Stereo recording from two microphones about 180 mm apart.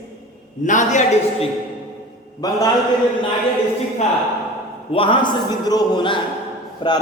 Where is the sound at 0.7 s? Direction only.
45° left (ahead or behind).